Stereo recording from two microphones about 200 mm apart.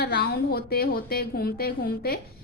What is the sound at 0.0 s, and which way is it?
A woman's voice, 55° left (ahead or behind).